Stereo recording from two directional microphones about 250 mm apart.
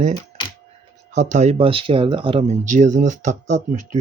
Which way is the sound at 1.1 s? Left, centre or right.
Right.